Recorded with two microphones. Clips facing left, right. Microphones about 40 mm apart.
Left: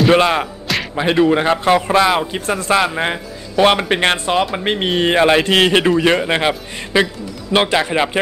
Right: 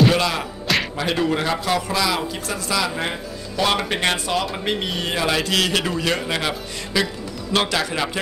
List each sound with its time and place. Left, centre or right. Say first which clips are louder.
0.1 s a man's voice: left 8 dB; left